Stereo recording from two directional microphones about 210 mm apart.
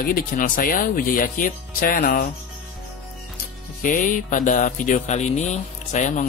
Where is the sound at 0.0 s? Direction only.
40° left (ahead or behind).